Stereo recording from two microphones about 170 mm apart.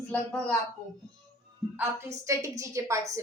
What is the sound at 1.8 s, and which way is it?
A woman's voice, 15° right (ahead or behind).